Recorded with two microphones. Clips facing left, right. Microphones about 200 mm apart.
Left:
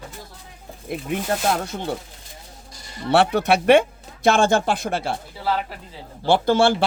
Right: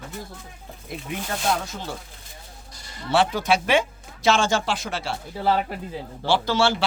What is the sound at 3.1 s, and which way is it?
Speech, 65° left (ahead or behind).